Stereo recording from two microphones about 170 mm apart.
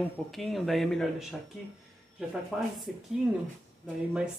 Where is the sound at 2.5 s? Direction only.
5° right (ahead or behind).